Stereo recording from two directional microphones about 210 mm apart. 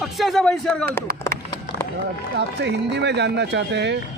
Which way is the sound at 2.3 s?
55° right (ahead or behind).